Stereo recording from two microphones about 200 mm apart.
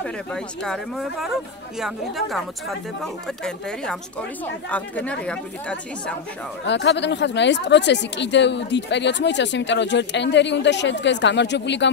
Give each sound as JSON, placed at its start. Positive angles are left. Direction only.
{"t": 0.0, "sound": "speech", "side_deg": 5}
{"t": 6.6, "sound": "speech", "side_deg": 60}